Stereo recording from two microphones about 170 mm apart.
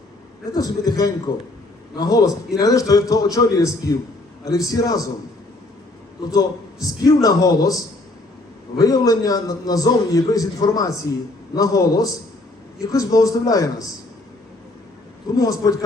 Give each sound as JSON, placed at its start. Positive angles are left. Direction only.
{"t": 0.5, "sound": "a man's voice", "side_deg": 20}
{"t": 6.3, "sound": "a man's voice", "side_deg": 20}
{"t": 8.8, "sound": "a man's voice", "side_deg": 20}
{"t": 15.4, "sound": "a man's voice", "side_deg": 20}